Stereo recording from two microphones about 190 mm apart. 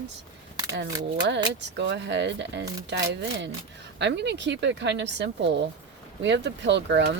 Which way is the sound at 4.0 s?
65° right (ahead or behind).